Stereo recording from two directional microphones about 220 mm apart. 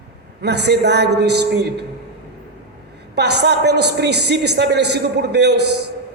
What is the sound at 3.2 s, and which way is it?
A man's voice, 50° right (ahead or behind).